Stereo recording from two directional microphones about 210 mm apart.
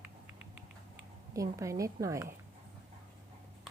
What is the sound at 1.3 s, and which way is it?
Speech, 15° right (ahead or behind).